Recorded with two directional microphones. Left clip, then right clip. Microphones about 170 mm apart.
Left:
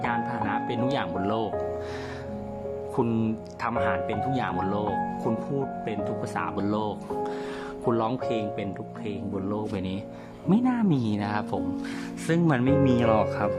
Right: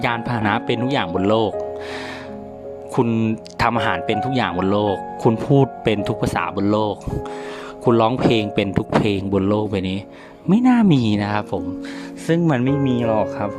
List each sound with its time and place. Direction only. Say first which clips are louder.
0.0 s speech: right 6 dB; 55° right (ahead or behind)
0.8 s speech: right 6 dB; 35° right (ahead or behind)
2.9 s speech: right 8 dB; 30° right (ahead or behind)
3.6 s speech: right 7 dB; 50° right (ahead or behind)
6.6 s speech: right 9 dB; 35° right (ahead or behind)